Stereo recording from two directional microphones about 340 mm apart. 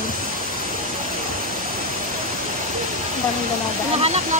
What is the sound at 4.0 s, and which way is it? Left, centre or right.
Speech, centre.